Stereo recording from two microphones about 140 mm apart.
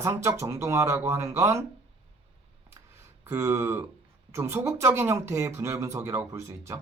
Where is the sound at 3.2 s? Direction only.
15° right (ahead or behind).